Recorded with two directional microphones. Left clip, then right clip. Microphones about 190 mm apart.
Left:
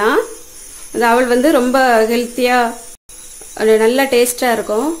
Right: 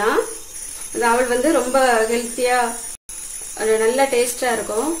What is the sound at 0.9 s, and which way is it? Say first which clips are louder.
A woman's voice: left 5 dB; 45° left (ahead or behind).